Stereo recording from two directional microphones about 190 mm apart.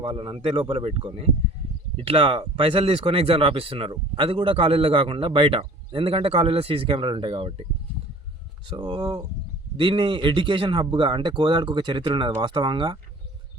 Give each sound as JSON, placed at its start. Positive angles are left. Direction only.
{"t": 0.0, "sound": "speech", "side_deg": -30}
{"t": 8.6, "sound": "speech", "side_deg": -25}